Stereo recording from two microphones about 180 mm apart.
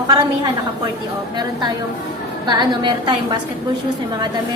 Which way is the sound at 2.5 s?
25° right (ahead or behind).